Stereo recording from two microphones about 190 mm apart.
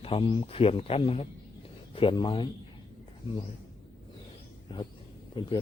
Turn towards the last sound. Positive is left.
turn(degrees=25)  # may be behind; listen again after turning